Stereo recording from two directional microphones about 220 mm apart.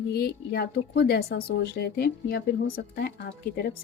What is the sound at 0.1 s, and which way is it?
Speech, 45° left (ahead or behind).